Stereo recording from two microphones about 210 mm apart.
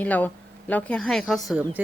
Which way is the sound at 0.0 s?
5° left (ahead or behind).